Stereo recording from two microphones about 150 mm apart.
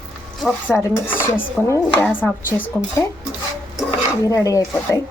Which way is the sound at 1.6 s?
20° left (ahead or behind).